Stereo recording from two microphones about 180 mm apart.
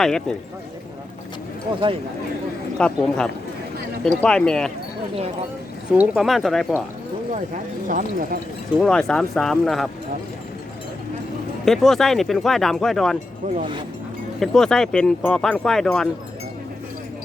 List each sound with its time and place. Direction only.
0.0 s speech: 5° left (ahead or behind)
2.7 s speech: 5° left (ahead or behind)
6.0 s speech: centre (ahead or behind)
7.9 s speech: 50° right (ahead or behind)
8.8 s speech: 5° left (ahead or behind)
11.6 s speech: centre (ahead or behind)
13.4 s speech: 40° right (ahead or behind)
14.3 s speech: centre (ahead or behind)